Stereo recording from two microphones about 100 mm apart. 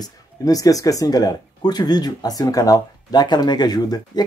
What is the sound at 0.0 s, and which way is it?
Speech, 35° left (ahead or behind).